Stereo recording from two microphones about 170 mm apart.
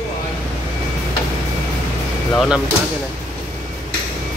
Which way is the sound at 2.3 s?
5° right (ahead or behind).